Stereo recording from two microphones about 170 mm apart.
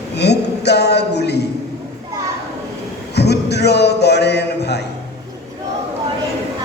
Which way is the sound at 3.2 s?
75° left (ahead or behind).